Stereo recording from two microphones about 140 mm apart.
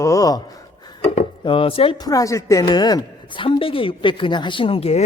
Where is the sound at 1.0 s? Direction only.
40° left (ahead or behind).